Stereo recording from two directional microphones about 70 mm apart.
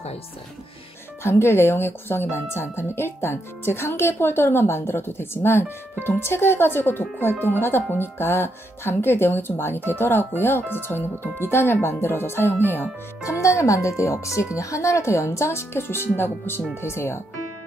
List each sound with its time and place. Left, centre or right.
1.2 s speech: left
13.3 s speech: left